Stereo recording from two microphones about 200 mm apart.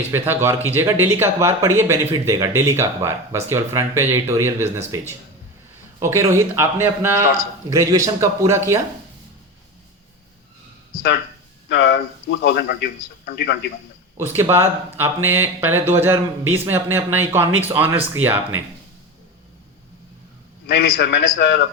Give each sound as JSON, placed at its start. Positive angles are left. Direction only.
{"t": 0.1, "sound": "speech", "side_deg": -10}
{"t": 11.7, "sound": "a man's voice", "side_deg": 60}
{"t": 14.2, "sound": "speech", "side_deg": -10}
{"t": 20.7, "sound": "a man's voice", "side_deg": 65}